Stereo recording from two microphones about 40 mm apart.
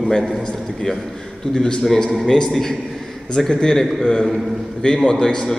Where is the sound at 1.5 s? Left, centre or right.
Centre.